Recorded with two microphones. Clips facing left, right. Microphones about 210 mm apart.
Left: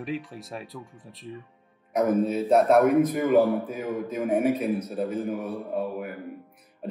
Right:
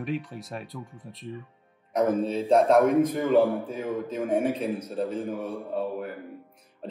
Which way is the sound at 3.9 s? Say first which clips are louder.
Left 1 dB; 15° left (ahead or behind).